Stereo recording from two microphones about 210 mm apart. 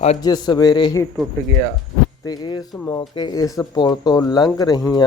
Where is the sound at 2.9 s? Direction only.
20° left (ahead or behind).